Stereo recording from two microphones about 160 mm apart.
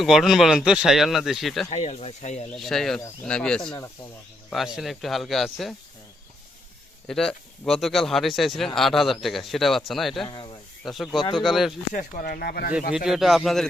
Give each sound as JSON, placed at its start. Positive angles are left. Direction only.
{"t": 0.0, "sound": "speech", "side_deg": 0}
{"t": 1.7, "sound": "speech", "side_deg": 45}
{"t": 2.5, "sound": "speech", "side_deg": 0}
{"t": 7.1, "sound": "speech", "side_deg": 5}
{"t": 10.2, "sound": "speech", "side_deg": 30}
{"t": 10.8, "sound": "speech", "side_deg": 0}
{"t": 11.9, "sound": "speech", "side_deg": 65}
{"t": 13.1, "sound": "speech", "side_deg": 0}